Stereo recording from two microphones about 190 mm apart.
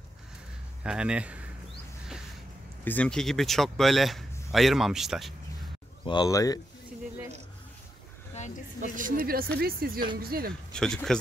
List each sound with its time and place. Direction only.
0.8 s speech: 5° right (ahead or behind)
2.8 s speech: 10° left (ahead or behind)
6.0 s speech: 20° left (ahead or behind)
8.9 s speech: 45° right (ahead or behind)
10.7 s speech: 5° left (ahead or behind)